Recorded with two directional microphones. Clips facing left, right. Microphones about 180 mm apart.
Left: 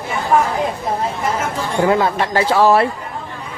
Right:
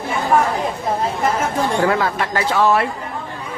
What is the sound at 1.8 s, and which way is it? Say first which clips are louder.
Speech: left 7 dB; 20° left (ahead or behind).